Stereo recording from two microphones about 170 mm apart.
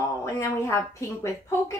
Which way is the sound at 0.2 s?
15° left (ahead or behind).